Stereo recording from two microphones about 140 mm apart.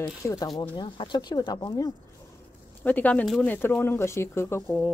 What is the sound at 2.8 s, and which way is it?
Speech, 10° left (ahead or behind).